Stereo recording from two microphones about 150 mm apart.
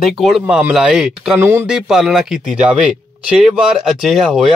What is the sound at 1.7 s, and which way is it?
Speech, 5° right (ahead or behind).